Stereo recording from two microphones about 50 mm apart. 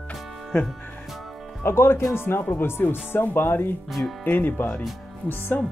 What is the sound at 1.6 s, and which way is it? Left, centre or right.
Speech, left.